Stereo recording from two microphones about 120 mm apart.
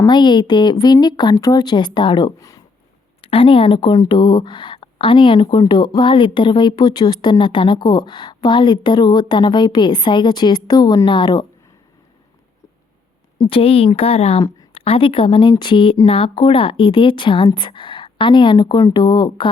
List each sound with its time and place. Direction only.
0.1 s a woman's voice: 40° left (ahead or behind)
13.4 s a woman's voice: 50° left (ahead or behind)